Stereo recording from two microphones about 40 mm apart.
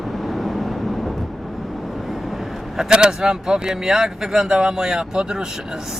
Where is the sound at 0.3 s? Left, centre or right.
Centre.